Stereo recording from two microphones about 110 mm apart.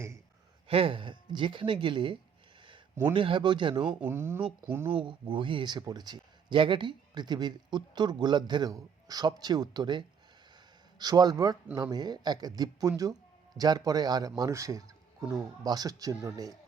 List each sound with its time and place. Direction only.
0.7 s speech: 55° right (ahead or behind)
3.2 s speech: 50° right (ahead or behind)
3.8 s speech: 15° right (ahead or behind)
4.9 s a man's voice: 50° right (ahead or behind); by 16.6 s 30° right (ahead or behind)